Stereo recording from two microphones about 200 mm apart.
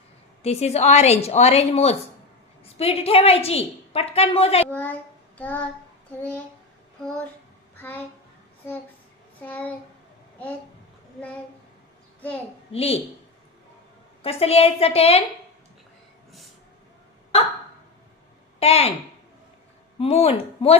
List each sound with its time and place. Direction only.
0.4 s a woman's voice: 30° left (ahead or behind)
4.7 s a child's voice: 10° left (ahead or behind)
7.8 s a child's voice: 10° left (ahead or behind)
9.4 s a child's voice: 10° left (ahead or behind)
12.7 s a woman's voice: 30° left (ahead or behind)
14.2 s a woman's voice: 30° left (ahead or behind)
18.6 s a woman's voice: 30° left (ahead or behind)
20.0 s a woman's voice: 30° left (ahead or behind)